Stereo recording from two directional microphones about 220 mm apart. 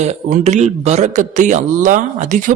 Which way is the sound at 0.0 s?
30° right (ahead or behind).